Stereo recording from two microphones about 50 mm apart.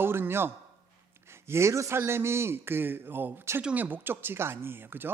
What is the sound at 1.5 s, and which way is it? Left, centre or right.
Speech, right.